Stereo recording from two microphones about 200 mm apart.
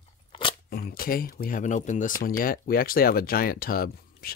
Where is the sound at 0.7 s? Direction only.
50° left (ahead or behind).